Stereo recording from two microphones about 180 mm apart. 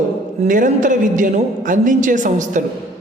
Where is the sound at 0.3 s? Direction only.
45° right (ahead or behind).